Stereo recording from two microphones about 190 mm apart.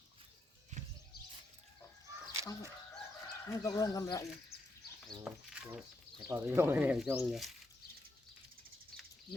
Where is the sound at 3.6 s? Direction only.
20° left (ahead or behind).